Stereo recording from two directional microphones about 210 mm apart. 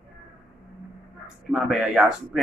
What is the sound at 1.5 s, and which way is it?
Speech, centre (ahead or behind).